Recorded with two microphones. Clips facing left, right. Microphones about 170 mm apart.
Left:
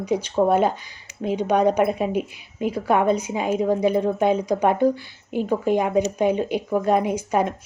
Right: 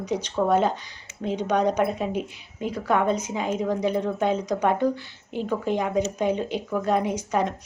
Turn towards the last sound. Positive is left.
turn(degrees=10)  # may be behind; listen again after turning